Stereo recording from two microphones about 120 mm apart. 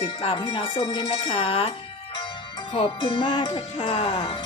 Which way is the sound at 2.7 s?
50° left (ahead or behind).